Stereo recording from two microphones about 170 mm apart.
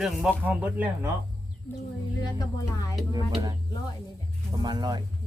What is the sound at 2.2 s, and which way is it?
Speech, 20° left (ahead or behind).